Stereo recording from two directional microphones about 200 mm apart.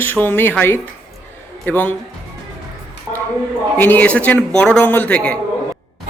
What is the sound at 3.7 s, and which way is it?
A man's voice, 10° left (ahead or behind).